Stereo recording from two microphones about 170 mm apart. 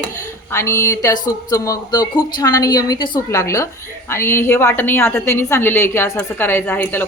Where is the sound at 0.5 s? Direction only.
15° left (ahead or behind).